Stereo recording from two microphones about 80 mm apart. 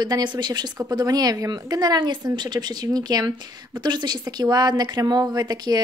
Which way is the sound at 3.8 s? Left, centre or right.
Right.